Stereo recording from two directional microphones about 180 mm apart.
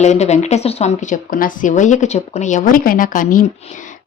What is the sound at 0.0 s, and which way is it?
Speech, 40° left (ahead or behind).